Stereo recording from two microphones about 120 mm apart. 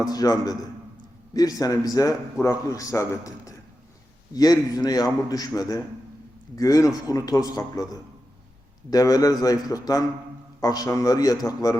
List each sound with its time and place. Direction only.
0.1 s a man's voice: 30° left (ahead or behind)
8.9 s a man's voice: 30° left (ahead or behind)